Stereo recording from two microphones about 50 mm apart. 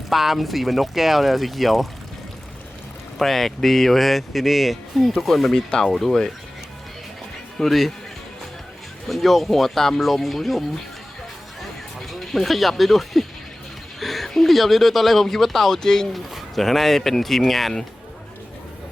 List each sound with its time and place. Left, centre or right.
0.1 s speech: centre
3.2 s speech: centre
7.6 s speech: centre
9.0 s speech: centre
11.6 s a sound: centre
14.0 s speech: centre